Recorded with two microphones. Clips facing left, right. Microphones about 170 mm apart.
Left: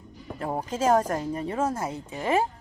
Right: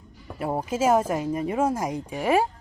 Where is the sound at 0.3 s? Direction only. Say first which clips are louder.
Right 3 dB; 10° right (ahead or behind).